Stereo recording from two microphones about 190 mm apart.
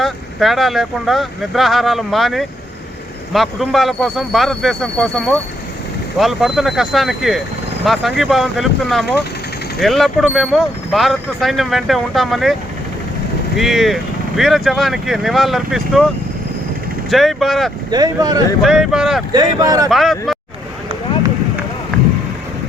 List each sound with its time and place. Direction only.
0.0 s speech: centre (ahead or behind)
13.6 s speech: centre (ahead or behind)
17.1 s speech: centre (ahead or behind)
17.9 s speech: 20° right (ahead or behind)
18.6 s speech: centre (ahead or behind)
19.3 s speech: 20° right (ahead or behind)
19.9 s speech: centre (ahead or behind)